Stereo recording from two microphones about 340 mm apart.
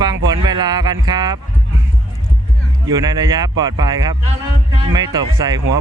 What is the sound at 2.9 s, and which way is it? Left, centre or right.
Speech, centre.